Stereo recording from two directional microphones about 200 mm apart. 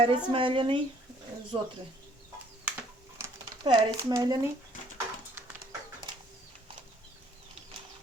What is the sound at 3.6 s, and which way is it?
Speech, 25° right (ahead or behind).